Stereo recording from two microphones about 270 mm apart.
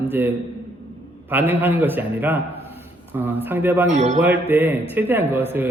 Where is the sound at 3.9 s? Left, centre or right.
Right.